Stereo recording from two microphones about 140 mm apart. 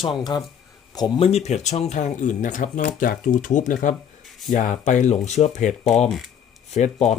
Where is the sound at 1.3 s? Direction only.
50° left (ahead or behind).